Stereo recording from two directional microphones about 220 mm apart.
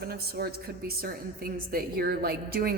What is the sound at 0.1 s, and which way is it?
A woman's voice, 45° right (ahead or behind).